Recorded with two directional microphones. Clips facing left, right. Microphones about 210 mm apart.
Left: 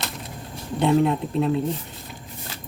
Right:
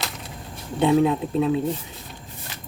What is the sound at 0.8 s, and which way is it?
Speech, centre (ahead or behind).